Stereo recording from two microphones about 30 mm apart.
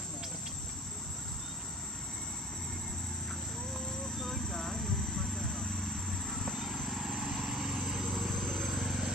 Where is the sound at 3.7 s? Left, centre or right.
Centre.